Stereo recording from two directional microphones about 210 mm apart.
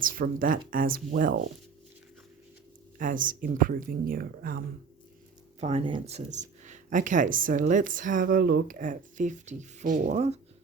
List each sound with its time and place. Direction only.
0.0 s speech: 40° right (ahead or behind)
3.0 s speech: 40° right (ahead or behind)
5.5 s speech: 30° right (ahead or behind)